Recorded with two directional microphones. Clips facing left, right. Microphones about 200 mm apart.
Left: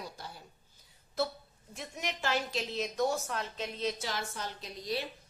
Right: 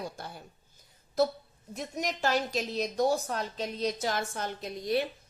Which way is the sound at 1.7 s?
40° right (ahead or behind).